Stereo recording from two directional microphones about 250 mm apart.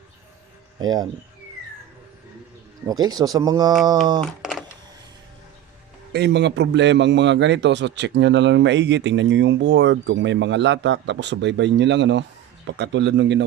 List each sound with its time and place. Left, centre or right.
0.8 s speech: centre
2.8 s speech: centre
4.2 s a sound: centre
6.1 s a man's voice: right